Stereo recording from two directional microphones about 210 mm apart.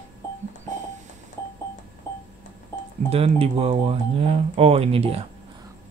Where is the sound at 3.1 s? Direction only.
30° right (ahead or behind).